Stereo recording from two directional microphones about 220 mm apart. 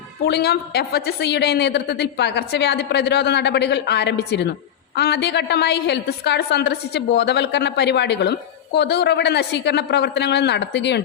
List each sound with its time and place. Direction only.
0.3 s a woman's voice: 50° left (ahead or behind)